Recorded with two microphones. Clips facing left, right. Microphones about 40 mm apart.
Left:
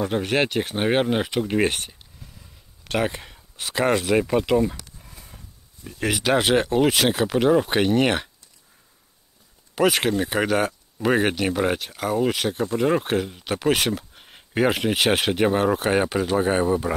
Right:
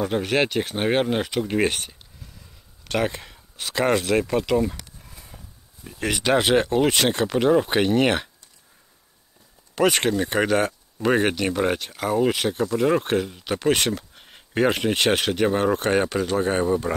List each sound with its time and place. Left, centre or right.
0.0 s speech: centre
9.8 s speech: centre